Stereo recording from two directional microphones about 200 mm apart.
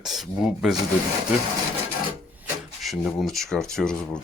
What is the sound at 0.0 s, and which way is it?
Speech, centre (ahead or behind).